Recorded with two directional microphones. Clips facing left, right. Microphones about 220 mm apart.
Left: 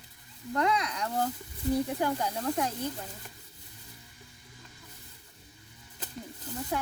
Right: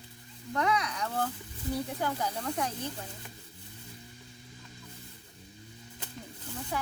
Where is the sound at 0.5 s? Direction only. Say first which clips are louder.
Left 1 dB; 10° left (ahead or behind).